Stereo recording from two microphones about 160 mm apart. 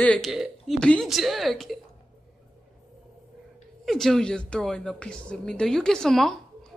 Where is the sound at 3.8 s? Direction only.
Centre (ahead or behind).